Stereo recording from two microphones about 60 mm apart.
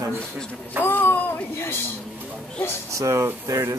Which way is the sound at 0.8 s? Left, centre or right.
Left.